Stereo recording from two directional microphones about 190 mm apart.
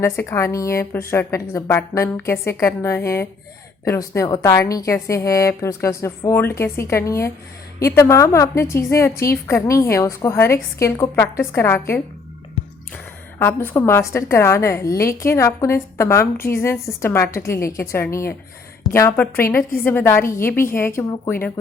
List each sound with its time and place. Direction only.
0.0 s a woman's voice: 15° left (ahead or behind)
13.4 s a woman's voice: 10° left (ahead or behind)